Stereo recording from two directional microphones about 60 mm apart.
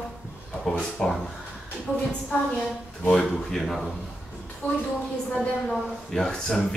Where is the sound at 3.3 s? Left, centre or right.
Centre.